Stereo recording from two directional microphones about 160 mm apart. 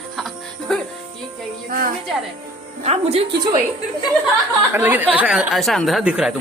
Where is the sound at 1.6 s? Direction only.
65° right (ahead or behind).